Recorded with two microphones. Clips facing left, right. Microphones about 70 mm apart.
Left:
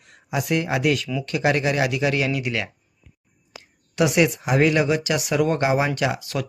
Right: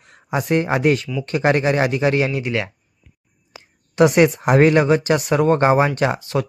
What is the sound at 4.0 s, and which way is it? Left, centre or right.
Speech, right.